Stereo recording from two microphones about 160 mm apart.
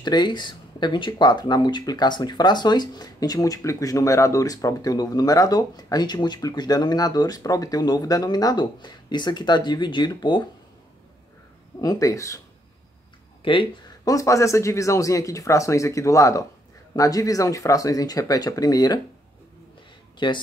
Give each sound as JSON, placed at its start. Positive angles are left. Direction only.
{"t": 0.0, "sound": "speech", "side_deg": 25}
{"t": 11.8, "sound": "speech", "side_deg": 20}
{"t": 13.4, "sound": "a sound", "side_deg": 30}
{"t": 14.1, "sound": "speech", "side_deg": 20}
{"t": 20.2, "sound": "speech", "side_deg": 30}